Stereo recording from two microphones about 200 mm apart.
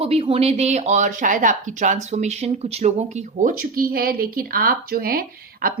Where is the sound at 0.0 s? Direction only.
30° right (ahead or behind).